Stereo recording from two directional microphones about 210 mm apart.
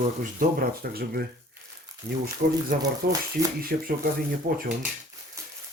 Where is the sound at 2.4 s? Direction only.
45° right (ahead or behind).